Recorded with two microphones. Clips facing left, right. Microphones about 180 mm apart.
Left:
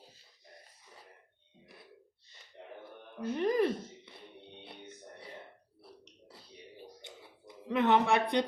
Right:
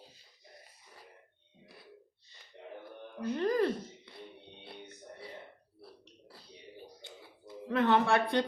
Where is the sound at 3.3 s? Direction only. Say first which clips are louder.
Left 1 dB; 20° left (ahead or behind).